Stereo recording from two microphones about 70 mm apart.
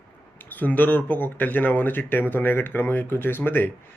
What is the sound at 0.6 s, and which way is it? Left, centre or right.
Speech, left.